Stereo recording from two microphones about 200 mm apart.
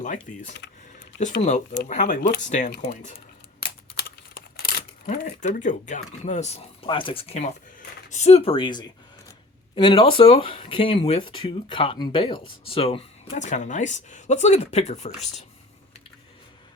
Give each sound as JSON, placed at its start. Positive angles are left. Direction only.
{"t": 0.0, "sound": "speech", "side_deg": 40}
{"t": 4.4, "sound": "speech", "side_deg": 45}